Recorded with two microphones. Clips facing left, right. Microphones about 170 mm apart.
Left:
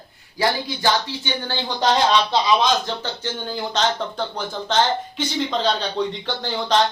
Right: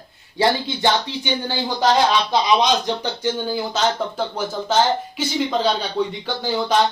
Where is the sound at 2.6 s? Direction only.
15° right (ahead or behind).